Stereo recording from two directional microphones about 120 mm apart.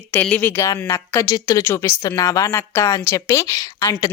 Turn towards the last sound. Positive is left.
turn(degrees=30)  # may be behind; listen again after turning